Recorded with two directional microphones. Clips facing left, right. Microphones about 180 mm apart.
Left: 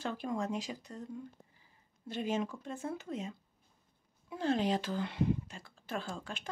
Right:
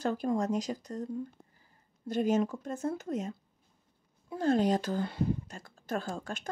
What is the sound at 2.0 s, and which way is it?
Speech, 40° right (ahead or behind).